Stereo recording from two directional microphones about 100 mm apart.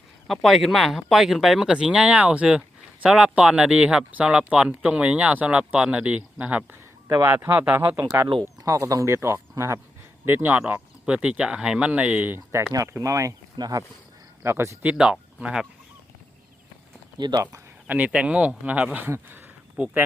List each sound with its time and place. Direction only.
0.3 s speech: centre (ahead or behind); by 14.8 s 25° right (ahead or behind)
14.8 s speech: 10° right (ahead or behind)
17.2 s speech: 45° right (ahead or behind)
17.8 s speech: 15° right (ahead or behind)